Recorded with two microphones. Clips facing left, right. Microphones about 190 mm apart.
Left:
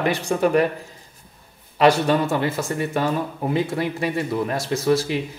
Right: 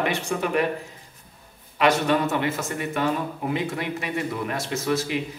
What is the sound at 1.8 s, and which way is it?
Speech, 35° left (ahead or behind).